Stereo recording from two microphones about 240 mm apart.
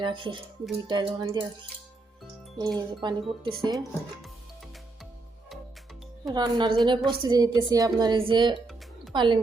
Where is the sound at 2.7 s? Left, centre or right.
Centre.